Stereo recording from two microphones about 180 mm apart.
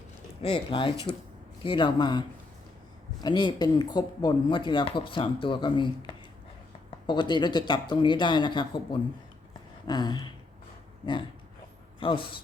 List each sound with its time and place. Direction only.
0.4 s speech: 30° left (ahead or behind)
3.2 s speech: 25° left (ahead or behind)